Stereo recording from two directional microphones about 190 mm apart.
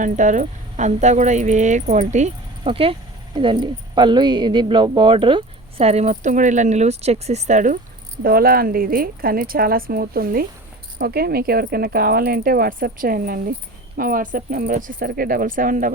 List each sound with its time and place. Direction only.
0.0 s speech: 40° right (ahead or behind)
8.2 s speech: 50° right (ahead or behind)